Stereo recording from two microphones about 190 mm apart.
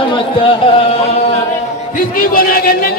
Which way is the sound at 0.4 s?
30° left (ahead or behind).